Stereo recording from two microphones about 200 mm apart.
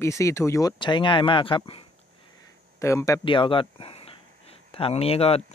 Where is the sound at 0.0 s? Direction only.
15° left (ahead or behind).